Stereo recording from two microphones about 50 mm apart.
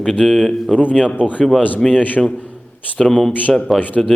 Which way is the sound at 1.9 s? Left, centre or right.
Left.